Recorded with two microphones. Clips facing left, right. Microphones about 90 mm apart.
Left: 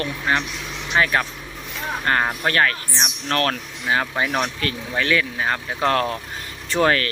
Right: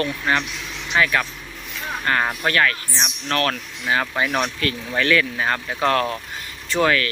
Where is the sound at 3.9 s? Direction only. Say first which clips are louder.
Even; 20° left (ahead or behind).